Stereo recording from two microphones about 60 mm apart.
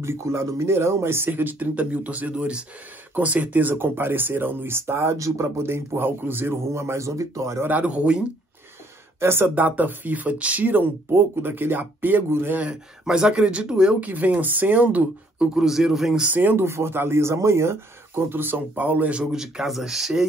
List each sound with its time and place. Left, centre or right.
0.0 s speech: right
5.1 s speech: right
5.6 s speech: right
7.6 s speech: right
9.2 s speech: right
9.6 s speech: right
13.0 s speech: centre
13.9 s speech: right; by 16.3 s centre
16.3 s speech: right
19.3 s speech: centre